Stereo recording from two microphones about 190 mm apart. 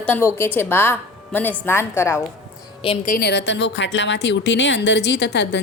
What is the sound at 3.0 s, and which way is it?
A woman's voice, 50° left (ahead or behind).